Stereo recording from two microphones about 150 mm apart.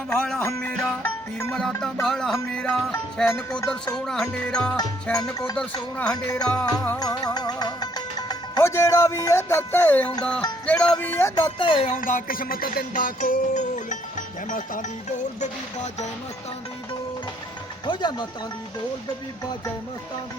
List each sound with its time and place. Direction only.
0.2 s music: 5° left (ahead or behind)
7.0 s speech: 25° left (ahead or behind); by 10.4 s 10° left (ahead or behind)
10.7 s music: 10° left (ahead or behind)
11.3 s speech: 35° left (ahead or behind)
11.9 s music: 60° left (ahead or behind)
15.4 s speech: 50° left (ahead or behind)
17.8 s speech: 30° left (ahead or behind)